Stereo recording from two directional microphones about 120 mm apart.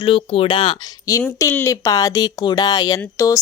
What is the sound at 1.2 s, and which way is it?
A woman's voice, 20° left (ahead or behind).